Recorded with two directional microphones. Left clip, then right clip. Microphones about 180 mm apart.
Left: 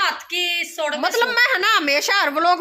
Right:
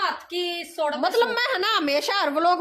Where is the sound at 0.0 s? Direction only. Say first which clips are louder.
Left 5 dB; 25° right (ahead or behind).